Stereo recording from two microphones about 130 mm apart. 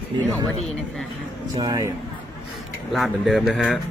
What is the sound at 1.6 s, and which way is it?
Speech, 30° right (ahead or behind).